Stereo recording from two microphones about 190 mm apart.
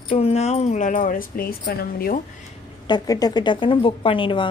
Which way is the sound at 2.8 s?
20° left (ahead or behind).